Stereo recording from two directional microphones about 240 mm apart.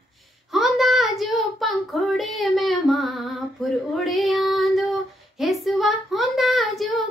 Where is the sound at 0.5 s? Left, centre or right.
Centre.